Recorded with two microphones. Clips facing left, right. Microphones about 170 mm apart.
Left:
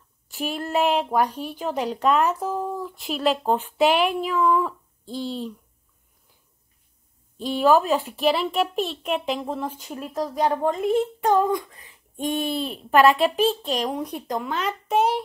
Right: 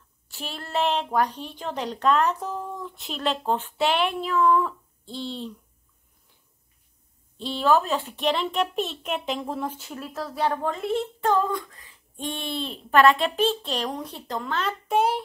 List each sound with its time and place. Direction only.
0.3 s speech: 15° left (ahead or behind)
7.3 s a child's voice: 10° left (ahead or behind)
10.4 s speech: 10° left (ahead or behind)
10.7 s a woman's voice: 45° left (ahead or behind)
11.0 s child singing: 20° left (ahead or behind)
12.5 s speech: 10° left (ahead or behind)